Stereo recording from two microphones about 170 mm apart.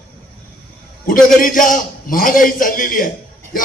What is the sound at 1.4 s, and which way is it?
A man's voice, 55° left (ahead or behind).